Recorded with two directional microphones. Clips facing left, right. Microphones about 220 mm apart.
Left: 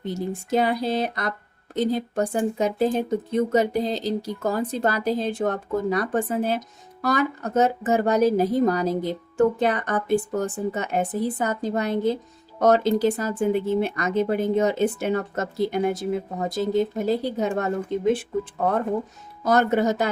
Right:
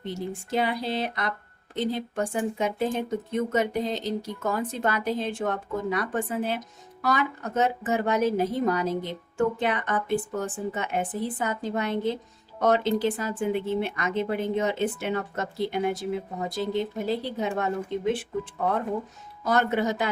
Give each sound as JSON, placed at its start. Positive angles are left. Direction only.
{"t": 0.1, "sound": "speech", "side_deg": 45}
{"t": 19.5, "sound": "speech", "side_deg": 45}